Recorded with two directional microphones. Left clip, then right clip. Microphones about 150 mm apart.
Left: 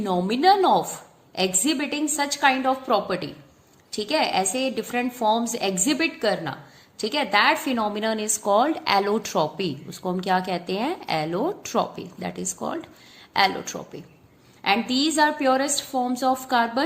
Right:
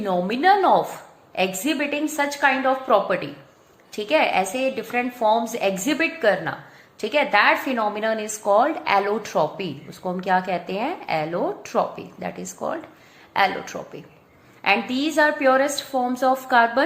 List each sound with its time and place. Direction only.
0.0 s a woman's voice: 40° left (ahead or behind)